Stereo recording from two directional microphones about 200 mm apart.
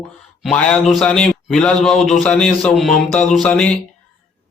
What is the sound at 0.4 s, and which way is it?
Speech, centre (ahead or behind).